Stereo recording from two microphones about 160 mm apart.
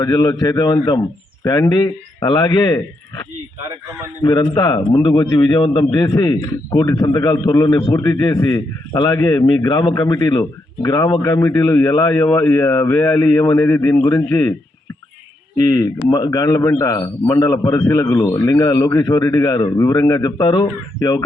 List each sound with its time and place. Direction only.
0.0 s speech: 20° left (ahead or behind)
4.2 s speech: 25° left (ahead or behind)
15.6 s speech: 25° left (ahead or behind)